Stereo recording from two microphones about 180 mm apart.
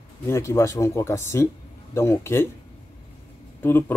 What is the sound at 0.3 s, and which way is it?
Speech, 15° left (ahead or behind).